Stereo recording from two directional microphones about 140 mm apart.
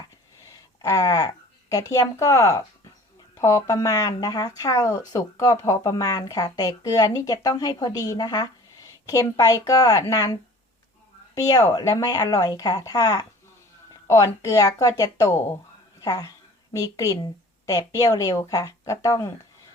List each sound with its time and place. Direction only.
0.4 s a woman's voice: 25° left (ahead or behind)
11.3 s speech: 25° left (ahead or behind)